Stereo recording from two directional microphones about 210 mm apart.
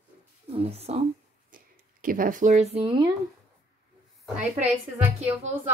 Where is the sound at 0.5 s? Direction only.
30° right (ahead or behind).